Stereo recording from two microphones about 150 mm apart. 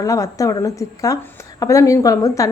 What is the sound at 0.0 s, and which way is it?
A woman's voice, 25° left (ahead or behind).